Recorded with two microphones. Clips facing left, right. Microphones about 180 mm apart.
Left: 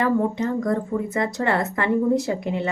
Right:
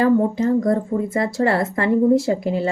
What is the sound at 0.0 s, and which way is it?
Speech, 30° right (ahead or behind).